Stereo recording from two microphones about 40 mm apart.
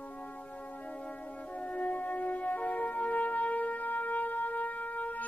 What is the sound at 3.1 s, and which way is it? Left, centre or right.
Music, left.